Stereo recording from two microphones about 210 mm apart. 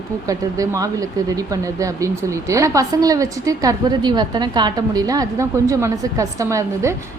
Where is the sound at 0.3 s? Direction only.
15° right (ahead or behind).